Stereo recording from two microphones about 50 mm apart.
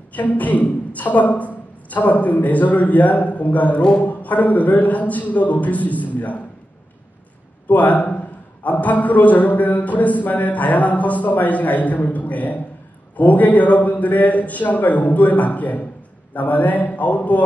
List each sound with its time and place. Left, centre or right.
0.1 s a woman's voice: left
7.6 s speech: left